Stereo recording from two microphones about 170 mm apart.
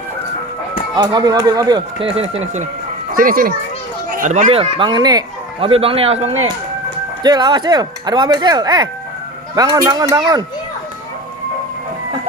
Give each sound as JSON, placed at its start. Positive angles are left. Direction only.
{"t": 0.9, "sound": "speech", "side_deg": -25}
{"t": 3.1, "sound": "a man's voice", "side_deg": -55}
{"t": 7.2, "sound": "speech", "side_deg": -25}